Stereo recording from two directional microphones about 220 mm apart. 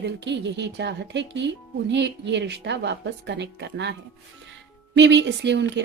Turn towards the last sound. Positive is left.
turn(degrees=-50)  # may be behind; listen again after turning